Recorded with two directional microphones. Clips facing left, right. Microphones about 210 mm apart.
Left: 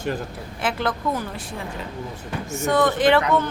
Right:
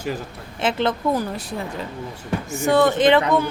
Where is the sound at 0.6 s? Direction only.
25° right (ahead or behind).